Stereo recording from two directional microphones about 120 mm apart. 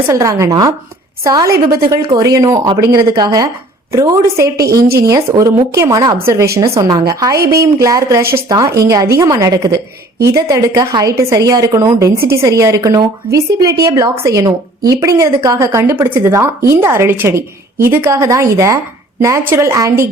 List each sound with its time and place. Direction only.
0.1 s a woman's voice: 25° right (ahead or behind)